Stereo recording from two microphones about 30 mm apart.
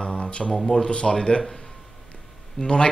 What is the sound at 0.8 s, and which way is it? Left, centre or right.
Speech, left.